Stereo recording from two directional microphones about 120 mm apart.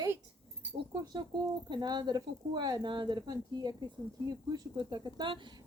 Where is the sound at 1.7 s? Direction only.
35° right (ahead or behind).